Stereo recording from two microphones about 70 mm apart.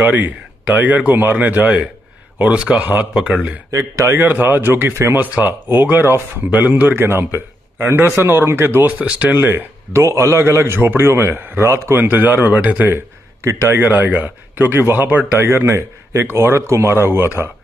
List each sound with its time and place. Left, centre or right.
0.0 s speech: right
4.1 s speech: right
7.0 s speech: right
10.0 s speech: right
12.0 s speech: right